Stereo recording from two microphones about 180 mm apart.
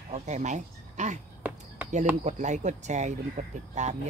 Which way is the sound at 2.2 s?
40° right (ahead or behind).